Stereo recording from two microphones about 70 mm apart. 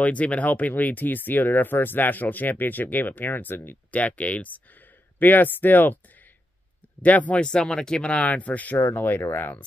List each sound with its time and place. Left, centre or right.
0.0 s speech: centre
7.0 s speech: left